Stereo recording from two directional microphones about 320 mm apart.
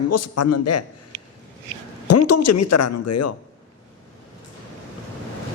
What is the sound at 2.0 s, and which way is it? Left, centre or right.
A woman's voice, left.